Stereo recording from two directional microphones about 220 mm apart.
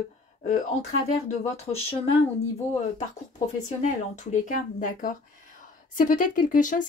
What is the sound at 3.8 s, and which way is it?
Speech, 35° left (ahead or behind).